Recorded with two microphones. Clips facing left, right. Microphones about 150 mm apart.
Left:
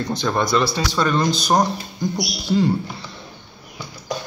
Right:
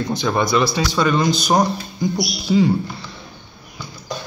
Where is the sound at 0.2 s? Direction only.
5° right (ahead or behind).